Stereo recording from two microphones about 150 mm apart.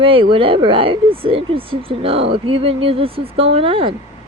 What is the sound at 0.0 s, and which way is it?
Speech, 35° right (ahead or behind).